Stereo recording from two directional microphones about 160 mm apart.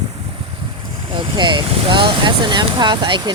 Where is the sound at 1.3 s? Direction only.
30° right (ahead or behind).